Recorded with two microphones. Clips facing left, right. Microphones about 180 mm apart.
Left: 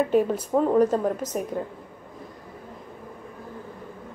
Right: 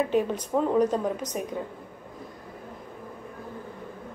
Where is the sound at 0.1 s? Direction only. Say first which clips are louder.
Left 3 dB; 5° left (ahead or behind).